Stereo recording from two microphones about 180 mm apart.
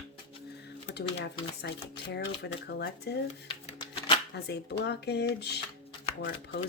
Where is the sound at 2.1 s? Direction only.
70° left (ahead or behind).